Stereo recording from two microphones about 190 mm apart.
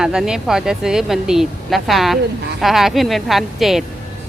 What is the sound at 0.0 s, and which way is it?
Speech, 5° right (ahead or behind).